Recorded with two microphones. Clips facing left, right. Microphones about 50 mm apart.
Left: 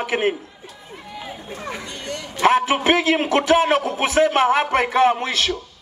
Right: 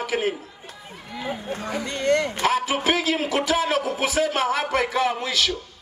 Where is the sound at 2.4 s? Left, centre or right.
Left.